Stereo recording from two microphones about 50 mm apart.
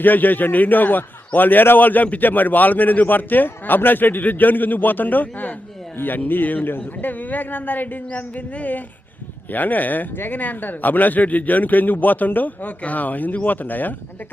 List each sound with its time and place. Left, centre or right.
0.0 s a man's voice: left